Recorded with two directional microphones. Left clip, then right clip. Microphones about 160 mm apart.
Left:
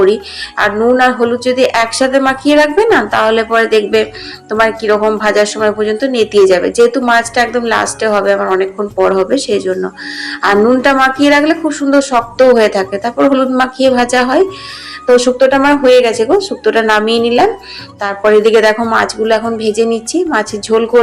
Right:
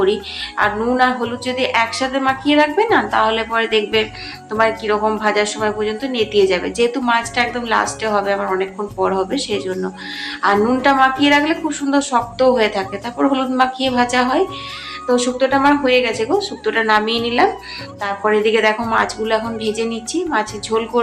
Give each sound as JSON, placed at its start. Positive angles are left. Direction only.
{"t": 0.0, "sound": "speech", "side_deg": 30}